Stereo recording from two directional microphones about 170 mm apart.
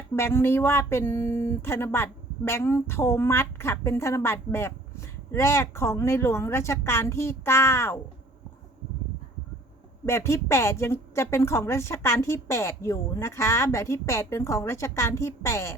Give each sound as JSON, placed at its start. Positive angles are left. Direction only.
{"t": 0.2, "sound": "speech", "side_deg": 15}
{"t": 10.1, "sound": "speech", "side_deg": 15}